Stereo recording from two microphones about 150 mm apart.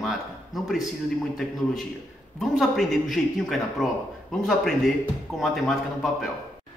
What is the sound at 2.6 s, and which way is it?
A man's voice, centre (ahead or behind).